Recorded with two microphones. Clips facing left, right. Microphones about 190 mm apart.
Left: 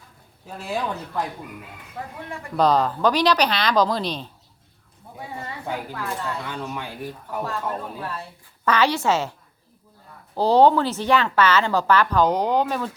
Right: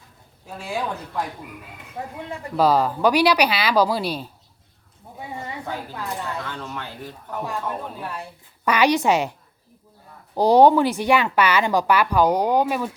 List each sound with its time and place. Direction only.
2.0 s speech: 25° right (ahead or behind)
2.6 s speech: 5° right (ahead or behind)
5.3 s a sound: 20° right (ahead or behind)
5.9 s speech: 15° right (ahead or behind)
6.4 s speech: 15° left (ahead or behind)
7.4 s speech: 15° right (ahead or behind)
10.3 s speech: 15° right (ahead or behind)